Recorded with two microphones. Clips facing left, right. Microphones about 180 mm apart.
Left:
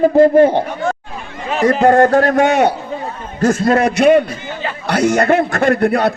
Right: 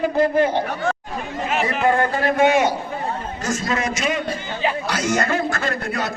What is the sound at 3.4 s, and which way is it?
A man's voice, 55° left (ahead or behind).